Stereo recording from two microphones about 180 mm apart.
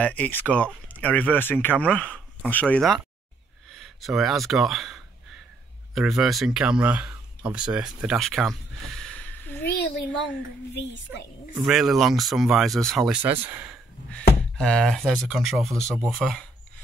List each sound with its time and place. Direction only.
0.0 s speech: 10° left (ahead or behind)
4.0 s speech: centre (ahead or behind)
9.8 s a child's voice: 70° left (ahead or behind)
11.6 s speech: centre (ahead or behind)
13.2 s speech: 10° right (ahead or behind)
14.1 s speech: 5° left (ahead or behind)